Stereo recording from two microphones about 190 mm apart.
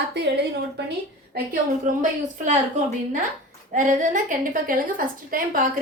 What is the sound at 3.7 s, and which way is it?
A woman's voice, 40° right (ahead or behind).